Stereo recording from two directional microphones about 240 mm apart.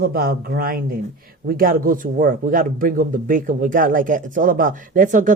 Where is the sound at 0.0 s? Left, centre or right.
Right.